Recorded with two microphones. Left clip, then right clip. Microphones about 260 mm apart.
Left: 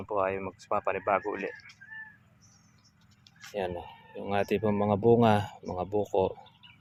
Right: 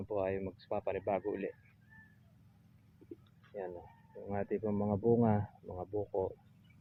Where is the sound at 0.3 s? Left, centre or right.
Left.